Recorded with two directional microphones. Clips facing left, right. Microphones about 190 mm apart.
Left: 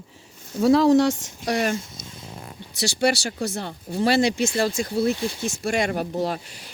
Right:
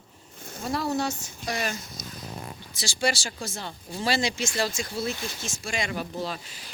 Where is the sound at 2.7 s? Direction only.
65° left (ahead or behind).